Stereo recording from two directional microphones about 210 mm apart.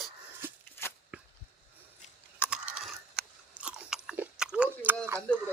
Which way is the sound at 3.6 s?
10° right (ahead or behind).